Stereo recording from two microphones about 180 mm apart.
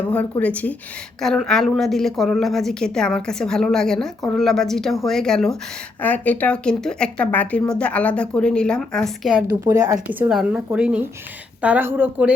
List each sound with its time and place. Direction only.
0.1 s a woman's voice: 10° left (ahead or behind)
9.6 s a woman's voice: 20° right (ahead or behind)
10.1 s speech: 5° right (ahead or behind)